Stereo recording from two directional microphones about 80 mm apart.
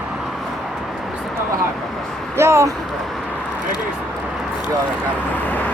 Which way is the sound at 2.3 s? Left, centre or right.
Right.